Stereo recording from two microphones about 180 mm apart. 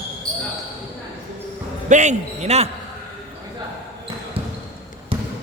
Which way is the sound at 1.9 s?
40° right (ahead or behind).